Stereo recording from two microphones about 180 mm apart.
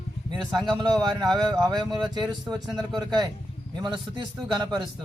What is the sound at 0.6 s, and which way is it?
Speech, 25° right (ahead or behind).